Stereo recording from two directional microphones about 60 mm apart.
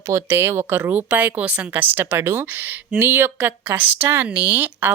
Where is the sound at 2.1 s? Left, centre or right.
Right.